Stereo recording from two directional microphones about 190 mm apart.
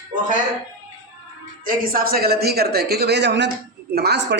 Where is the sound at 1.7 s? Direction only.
50° right (ahead or behind).